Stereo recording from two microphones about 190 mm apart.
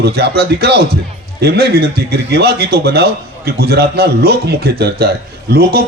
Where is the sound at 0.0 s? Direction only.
55° right (ahead or behind).